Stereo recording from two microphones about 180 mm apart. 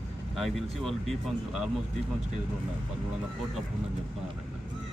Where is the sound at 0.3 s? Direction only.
Centre (ahead or behind).